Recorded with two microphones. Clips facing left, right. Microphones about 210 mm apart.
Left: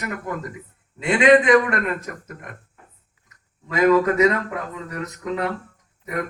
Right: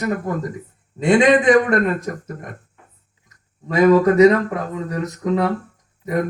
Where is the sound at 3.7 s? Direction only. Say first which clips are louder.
Right 4 dB; 35° right (ahead or behind).